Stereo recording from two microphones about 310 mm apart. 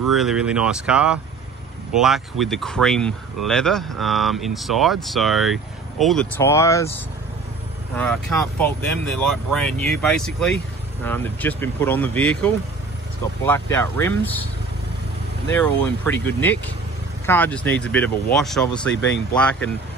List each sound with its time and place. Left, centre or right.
0.1 s speech: centre
7.9 s speech: centre
15.5 s speech: centre